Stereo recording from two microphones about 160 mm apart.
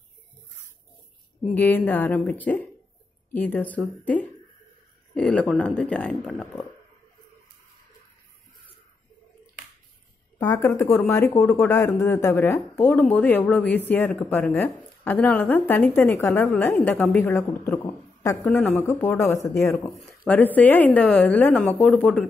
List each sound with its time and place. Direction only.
1.5 s speech: 10° left (ahead or behind)
10.4 s speech: 20° left (ahead or behind); by 22.2 s 5° left (ahead or behind)